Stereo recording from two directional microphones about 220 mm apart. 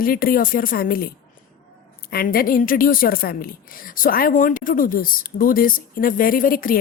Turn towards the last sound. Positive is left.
turn(degrees=40)  # may be behind; listen again after turning